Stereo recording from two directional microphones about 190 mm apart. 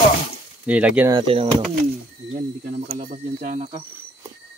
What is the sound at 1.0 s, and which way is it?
Speech, 25° right (ahead or behind).